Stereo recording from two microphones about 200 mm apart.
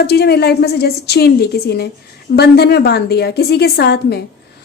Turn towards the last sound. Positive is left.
turn(degrees=55)  # may be behind; listen again after turning